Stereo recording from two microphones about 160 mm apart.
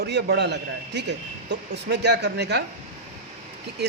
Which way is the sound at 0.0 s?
90° right.